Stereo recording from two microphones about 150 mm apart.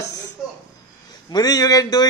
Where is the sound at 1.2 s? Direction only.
25° left (ahead or behind).